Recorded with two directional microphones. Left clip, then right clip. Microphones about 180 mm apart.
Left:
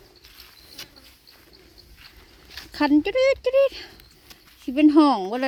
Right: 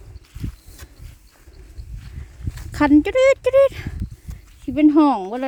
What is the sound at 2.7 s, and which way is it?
Speech, 20° right (ahead or behind).